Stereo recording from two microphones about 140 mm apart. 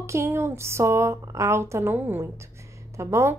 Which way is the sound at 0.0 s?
20° right (ahead or behind).